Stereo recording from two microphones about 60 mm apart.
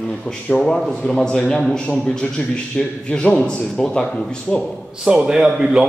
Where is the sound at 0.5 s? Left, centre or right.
Centre.